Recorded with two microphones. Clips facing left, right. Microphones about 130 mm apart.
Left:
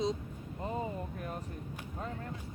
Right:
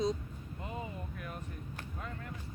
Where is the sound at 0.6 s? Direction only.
35° left (ahead or behind).